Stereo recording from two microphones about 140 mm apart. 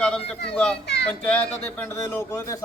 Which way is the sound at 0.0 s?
5° left (ahead or behind).